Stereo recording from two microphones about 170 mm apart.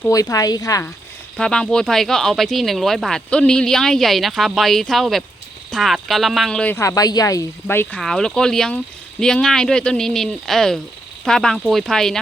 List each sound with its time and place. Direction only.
0.1 s speech: 20° left (ahead or behind)
1.4 s speech: 5° left (ahead or behind)